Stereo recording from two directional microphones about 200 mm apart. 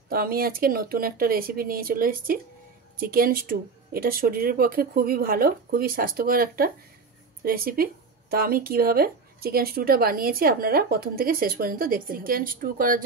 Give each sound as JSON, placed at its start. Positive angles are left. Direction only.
{"t": 0.1, "sound": "speech", "side_deg": -45}